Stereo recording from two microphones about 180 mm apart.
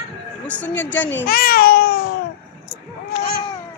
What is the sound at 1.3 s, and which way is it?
Speech, 60° left (ahead or behind).